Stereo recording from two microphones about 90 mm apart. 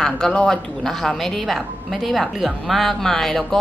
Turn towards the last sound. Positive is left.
turn(degrees=5)  # may be behind; listen again after turning